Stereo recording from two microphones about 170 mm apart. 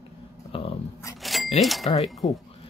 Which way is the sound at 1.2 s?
Centre (ahead or behind).